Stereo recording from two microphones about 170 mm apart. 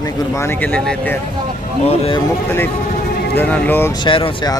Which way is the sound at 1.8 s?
35° left (ahead or behind).